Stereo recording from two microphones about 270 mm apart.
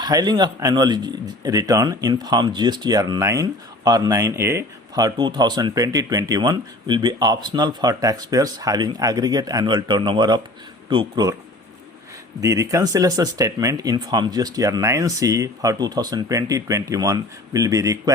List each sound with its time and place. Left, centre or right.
0.0 s speech: centre
12.4 s speech: centre